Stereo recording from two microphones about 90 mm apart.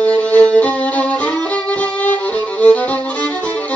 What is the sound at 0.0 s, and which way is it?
Violin, 15° left (ahead or behind).